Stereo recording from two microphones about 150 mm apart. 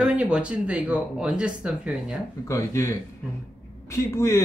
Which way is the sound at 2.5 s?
20° left (ahead or behind).